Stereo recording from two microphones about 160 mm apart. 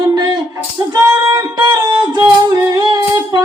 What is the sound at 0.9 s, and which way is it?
Music, 25° right (ahead or behind).